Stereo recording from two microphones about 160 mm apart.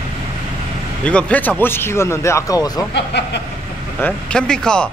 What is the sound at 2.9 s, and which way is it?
Speech, 90° left.